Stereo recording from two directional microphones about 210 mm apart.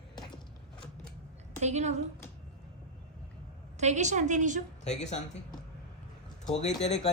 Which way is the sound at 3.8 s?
35° right (ahead or behind).